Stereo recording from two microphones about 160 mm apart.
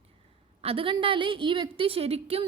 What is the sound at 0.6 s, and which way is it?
A woman's voice, 35° right (ahead or behind).